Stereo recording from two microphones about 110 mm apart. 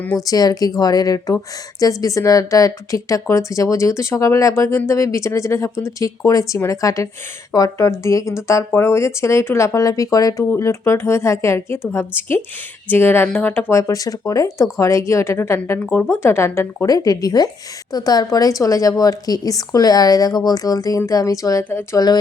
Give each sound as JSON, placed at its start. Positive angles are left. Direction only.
{"t": 0.3, "sound": "a woman's voice", "side_deg": 35}
{"t": 21.6, "sound": "speech", "side_deg": 20}
{"t": 21.9, "sound": "a woman's voice", "side_deg": 35}